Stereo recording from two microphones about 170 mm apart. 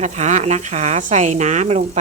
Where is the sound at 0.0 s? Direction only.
45° right (ahead or behind).